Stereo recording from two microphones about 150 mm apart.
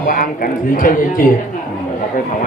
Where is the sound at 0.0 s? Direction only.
70° left (ahead or behind).